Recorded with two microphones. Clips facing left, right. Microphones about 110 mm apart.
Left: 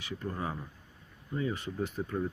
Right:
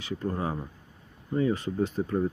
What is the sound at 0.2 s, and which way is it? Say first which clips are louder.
Speech: right 5 dB; 35° right (ahead or behind).